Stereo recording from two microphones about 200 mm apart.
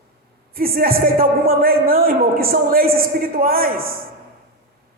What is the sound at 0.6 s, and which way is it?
A man's voice, 45° right (ahead or behind).